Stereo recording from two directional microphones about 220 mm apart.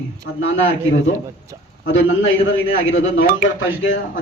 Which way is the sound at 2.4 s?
65° left (ahead or behind).